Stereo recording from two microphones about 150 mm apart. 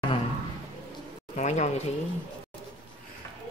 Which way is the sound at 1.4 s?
50° left (ahead or behind).